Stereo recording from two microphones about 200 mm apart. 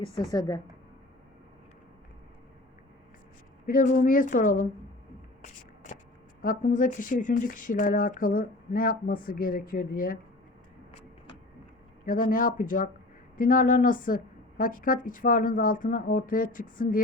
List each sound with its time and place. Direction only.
0.0 s a woman's voice: 20° left (ahead or behind)
3.7 s speech: 40° left (ahead or behind)
5.4 s a sound: 40° left (ahead or behind)
6.4 s speech: 40° left (ahead or behind)
12.0 s speech: 45° left (ahead or behind)